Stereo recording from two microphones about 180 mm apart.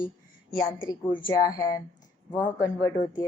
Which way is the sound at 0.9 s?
20° left (ahead or behind).